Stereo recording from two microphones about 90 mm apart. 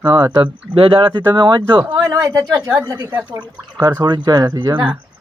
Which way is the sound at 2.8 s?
45° right (ahead or behind).